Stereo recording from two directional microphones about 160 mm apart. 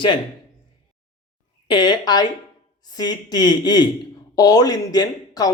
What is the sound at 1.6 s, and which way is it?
Speech, 25° left (ahead or behind).